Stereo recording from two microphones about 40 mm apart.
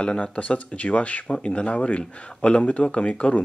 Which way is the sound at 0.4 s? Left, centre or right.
Left.